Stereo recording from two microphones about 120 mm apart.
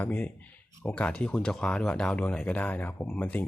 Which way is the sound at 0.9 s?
10° left (ahead or behind).